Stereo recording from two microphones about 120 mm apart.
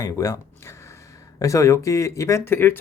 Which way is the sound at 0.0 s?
30° left (ahead or behind).